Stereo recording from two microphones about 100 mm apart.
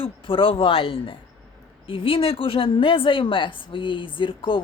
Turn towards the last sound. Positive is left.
turn(degrees=55)  # may be behind; listen again after turning